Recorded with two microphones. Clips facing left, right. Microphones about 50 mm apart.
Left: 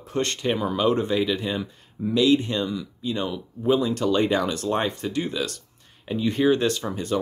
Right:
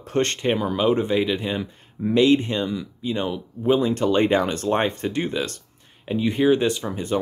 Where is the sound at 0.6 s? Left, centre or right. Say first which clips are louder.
Right 1 dB; centre.